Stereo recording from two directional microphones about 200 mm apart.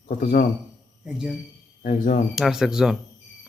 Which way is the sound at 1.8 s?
40° left (ahead or behind).